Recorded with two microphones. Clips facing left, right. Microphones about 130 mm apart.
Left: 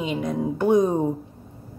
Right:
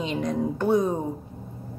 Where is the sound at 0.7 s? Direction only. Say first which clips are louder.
Left 4 dB; 15° left (ahead or behind).